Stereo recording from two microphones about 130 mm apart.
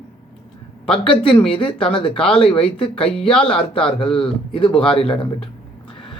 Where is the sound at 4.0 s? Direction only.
45° left (ahead or behind).